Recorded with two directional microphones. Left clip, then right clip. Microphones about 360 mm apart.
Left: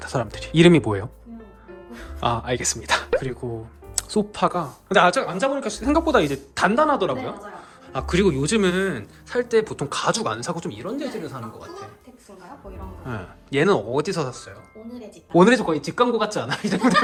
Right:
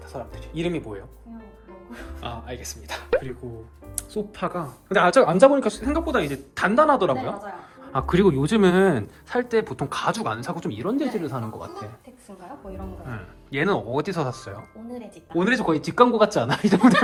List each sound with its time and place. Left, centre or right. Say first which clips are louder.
0.0 s speech: left 9 dB; left
2.2 s speech: left 12 dB; centre
3.4 s speech: left 7 dB; left
4.0 s music: left 9 dB; centre
4.4 s speech: left 7 dB; centre
13.1 s speech: left 5 dB; centre
15.4 s speech: left 5 dB; centre